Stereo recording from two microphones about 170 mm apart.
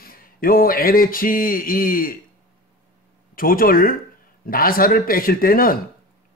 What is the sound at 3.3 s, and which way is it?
Speech, 55° left (ahead or behind).